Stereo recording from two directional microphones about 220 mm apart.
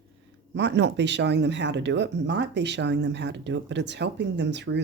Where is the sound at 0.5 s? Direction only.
55° right (ahead or behind).